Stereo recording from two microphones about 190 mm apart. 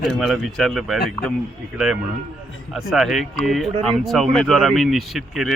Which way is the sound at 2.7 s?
Centre (ahead or behind).